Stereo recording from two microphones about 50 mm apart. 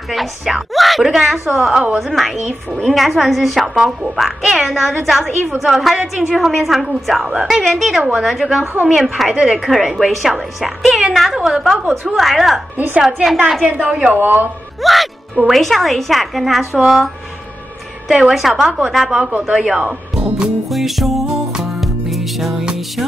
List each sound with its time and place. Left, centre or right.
0.1 s a woman's voice: centre
12.7 s a woman's voice: right
13.0 s a woman's voice: centre
13.7 s speech: right
14.8 s a woman's voice: centre
18.3 s a woman's voice: centre
20.7 s music: centre